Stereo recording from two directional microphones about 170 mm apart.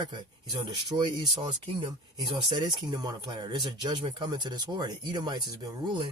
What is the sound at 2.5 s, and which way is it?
Speech, 25° right (ahead or behind).